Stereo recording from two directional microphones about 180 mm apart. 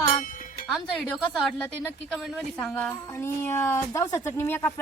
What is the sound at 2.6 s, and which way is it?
A woman's voice, 10° left (ahead or behind).